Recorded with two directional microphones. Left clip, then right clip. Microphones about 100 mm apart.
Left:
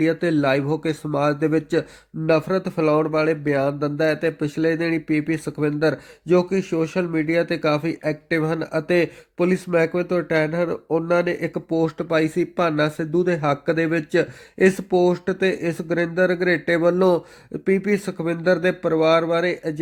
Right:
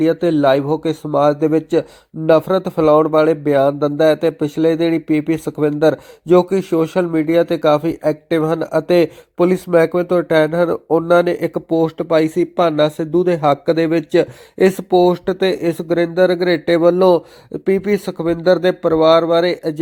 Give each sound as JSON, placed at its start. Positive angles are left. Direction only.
{"t": 0.0, "sound": "speech", "side_deg": -15}
{"t": 5.5, "sound": "speech", "side_deg": -15}
{"t": 6.2, "sound": "speech", "side_deg": -30}
{"t": 11.8, "sound": "speech", "side_deg": -15}